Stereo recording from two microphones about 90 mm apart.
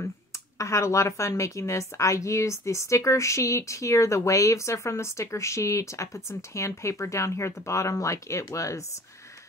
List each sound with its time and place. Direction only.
0.6 s a woman's voice: 35° left (ahead or behind)